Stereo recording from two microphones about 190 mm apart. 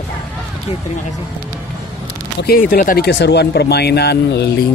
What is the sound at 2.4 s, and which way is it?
Speech, 50° left (ahead or behind).